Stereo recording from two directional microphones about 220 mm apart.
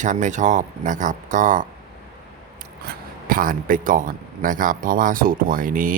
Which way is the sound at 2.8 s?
40° right (ahead or behind).